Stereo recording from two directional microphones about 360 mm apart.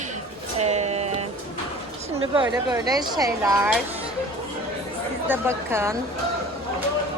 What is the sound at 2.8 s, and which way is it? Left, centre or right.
Speech, centre.